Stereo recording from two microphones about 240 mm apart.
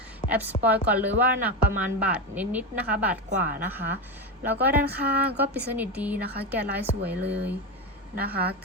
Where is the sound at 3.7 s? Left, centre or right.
Centre.